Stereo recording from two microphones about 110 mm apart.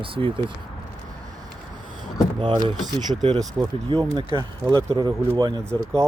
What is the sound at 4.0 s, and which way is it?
Speech, 45° right (ahead or behind).